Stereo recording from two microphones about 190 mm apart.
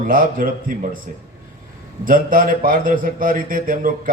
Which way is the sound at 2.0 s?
45° right (ahead or behind).